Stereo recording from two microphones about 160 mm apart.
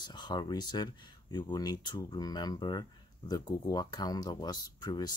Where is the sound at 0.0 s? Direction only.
25° left (ahead or behind).